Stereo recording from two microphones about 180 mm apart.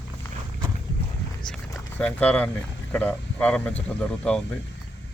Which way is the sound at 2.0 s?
5° left (ahead or behind).